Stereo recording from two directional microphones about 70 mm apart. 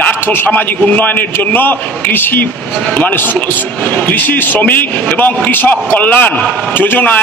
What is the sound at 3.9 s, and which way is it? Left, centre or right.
A man's voice, left.